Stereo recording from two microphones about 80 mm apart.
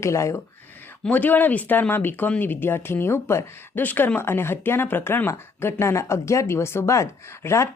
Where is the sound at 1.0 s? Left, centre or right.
Left.